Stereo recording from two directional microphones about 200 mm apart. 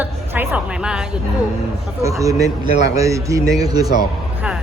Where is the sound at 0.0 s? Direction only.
10° right (ahead or behind).